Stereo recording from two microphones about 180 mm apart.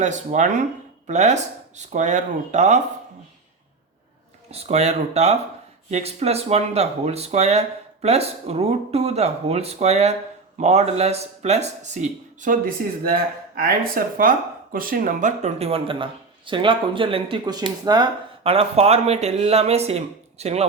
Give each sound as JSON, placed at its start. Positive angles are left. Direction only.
{"t": 0.0, "sound": "speech", "side_deg": -40}
{"t": 4.5, "sound": "speech", "side_deg": -35}